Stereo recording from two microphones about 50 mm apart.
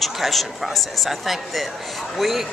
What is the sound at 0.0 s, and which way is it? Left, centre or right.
Speech, centre.